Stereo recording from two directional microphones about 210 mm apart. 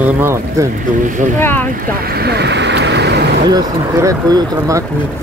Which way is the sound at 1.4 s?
10° left (ahead or behind).